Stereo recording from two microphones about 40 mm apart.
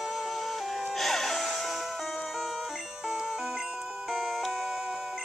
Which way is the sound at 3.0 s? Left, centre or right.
Centre.